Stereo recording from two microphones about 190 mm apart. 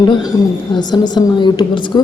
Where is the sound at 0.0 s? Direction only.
20° left (ahead or behind).